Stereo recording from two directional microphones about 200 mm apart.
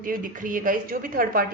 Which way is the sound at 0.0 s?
45° right (ahead or behind).